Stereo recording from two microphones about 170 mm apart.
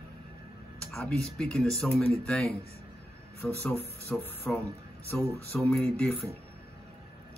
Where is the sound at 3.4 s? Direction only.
15° left (ahead or behind).